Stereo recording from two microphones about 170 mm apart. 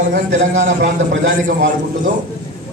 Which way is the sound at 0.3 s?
90° right.